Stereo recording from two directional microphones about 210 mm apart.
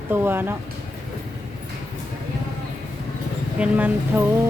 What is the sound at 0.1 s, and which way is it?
Speech, 10° right (ahead or behind).